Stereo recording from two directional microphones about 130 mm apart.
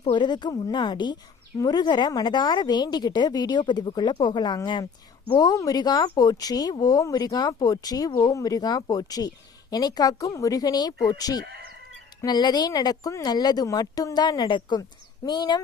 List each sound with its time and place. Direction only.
0.0 s a woman's voice: 35° left (ahead or behind)